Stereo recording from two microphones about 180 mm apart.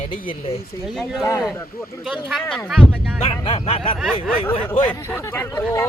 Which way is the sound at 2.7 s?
Centre (ahead or behind).